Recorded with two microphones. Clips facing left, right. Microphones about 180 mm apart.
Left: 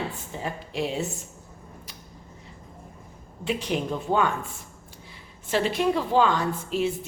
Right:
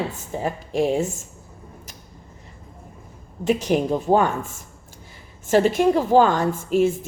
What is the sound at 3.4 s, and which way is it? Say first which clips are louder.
A woman's voice: right 7 dB; 45° right (ahead or behind).